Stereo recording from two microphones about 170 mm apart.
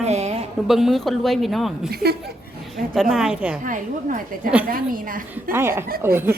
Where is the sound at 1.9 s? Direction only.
65° right (ahead or behind).